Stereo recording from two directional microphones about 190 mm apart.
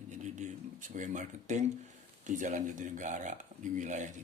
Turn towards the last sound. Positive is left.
turn(degrees=-40)  # may be behind; listen again after turning